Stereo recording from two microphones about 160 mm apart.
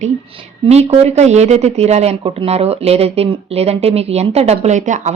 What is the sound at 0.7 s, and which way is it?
A woman's voice, 40° right (ahead or behind).